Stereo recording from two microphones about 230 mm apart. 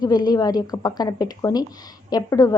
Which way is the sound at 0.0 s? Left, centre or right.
Centre.